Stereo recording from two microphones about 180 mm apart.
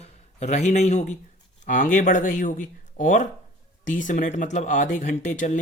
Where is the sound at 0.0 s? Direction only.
40° left (ahead or behind).